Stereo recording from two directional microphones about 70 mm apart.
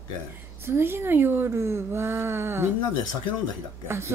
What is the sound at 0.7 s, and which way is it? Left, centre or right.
Speech, right.